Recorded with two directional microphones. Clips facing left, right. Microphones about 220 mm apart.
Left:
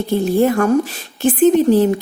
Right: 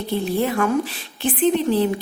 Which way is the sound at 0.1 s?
45° left (ahead or behind).